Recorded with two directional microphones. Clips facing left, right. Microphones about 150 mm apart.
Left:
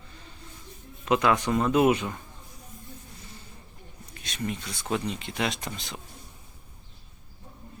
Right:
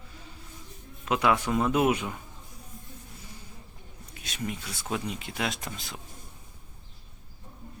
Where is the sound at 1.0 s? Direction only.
5° right (ahead or behind).